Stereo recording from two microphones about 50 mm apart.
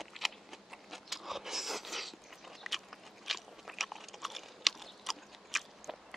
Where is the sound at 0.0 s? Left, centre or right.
Centre.